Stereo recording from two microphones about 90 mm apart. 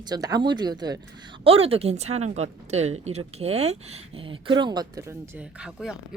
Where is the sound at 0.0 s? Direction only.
50° right (ahead or behind).